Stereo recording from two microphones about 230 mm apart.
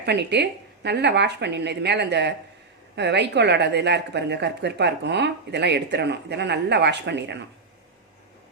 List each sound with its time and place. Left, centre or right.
0.0 s a woman's voice: right